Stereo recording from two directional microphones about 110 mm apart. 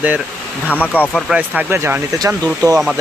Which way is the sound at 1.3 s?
15° right (ahead or behind).